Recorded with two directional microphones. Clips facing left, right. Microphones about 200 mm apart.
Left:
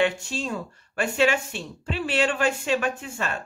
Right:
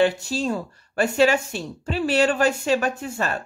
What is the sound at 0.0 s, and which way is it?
Speech, 40° right (ahead or behind).